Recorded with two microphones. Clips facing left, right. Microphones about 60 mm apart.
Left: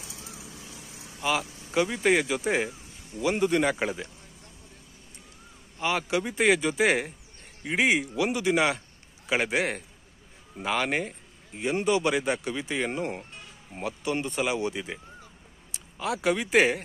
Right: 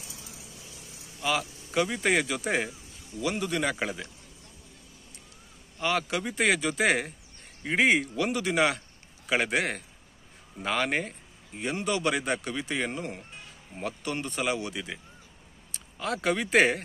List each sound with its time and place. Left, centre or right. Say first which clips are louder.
1.2 s speech: left 1 dB; centre
3.2 s a man's voice: left 5 dB; left
5.8 s speech: left 1 dB; centre
11.7 s speech: left 4 dB; centre
12.9 s a man's voice: left 4 dB; left
13.7 s a man's voice: left 3 dB; centre
15.7 s speech: left 1 dB; centre